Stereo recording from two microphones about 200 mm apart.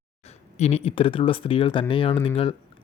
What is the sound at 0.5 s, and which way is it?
Speech, 30° left (ahead or behind).